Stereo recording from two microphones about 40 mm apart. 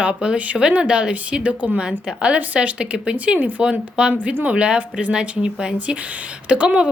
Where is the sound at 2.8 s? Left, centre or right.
Right.